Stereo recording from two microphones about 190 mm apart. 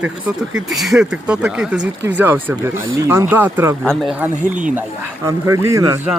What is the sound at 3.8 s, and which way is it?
Speech, 5° left (ahead or behind).